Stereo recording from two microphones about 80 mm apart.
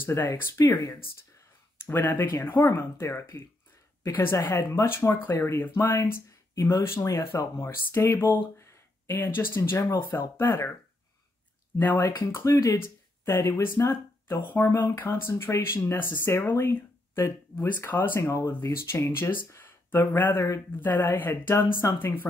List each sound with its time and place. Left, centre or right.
0.0 s speech: left
1.9 s speech: left
6.5 s speech: left
11.8 s speech: left
12.4 s speech: left
12.7 s speech: left